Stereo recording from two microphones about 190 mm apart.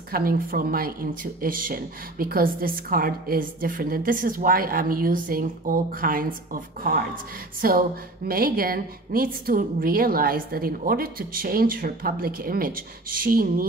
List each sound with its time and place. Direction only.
0.1 s speech: 50° right (ahead or behind)